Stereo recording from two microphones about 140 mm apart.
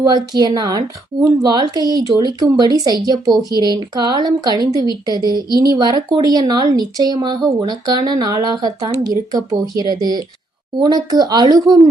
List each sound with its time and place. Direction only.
0.0 s a woman's voice: 30° right (ahead or behind)